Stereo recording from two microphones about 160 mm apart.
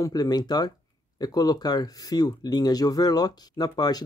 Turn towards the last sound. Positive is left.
turn(degrees=25)  # may be behind; listen again after turning